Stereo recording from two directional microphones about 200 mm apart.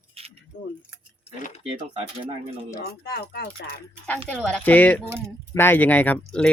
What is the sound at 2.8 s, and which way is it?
Speech, 55° left (ahead or behind).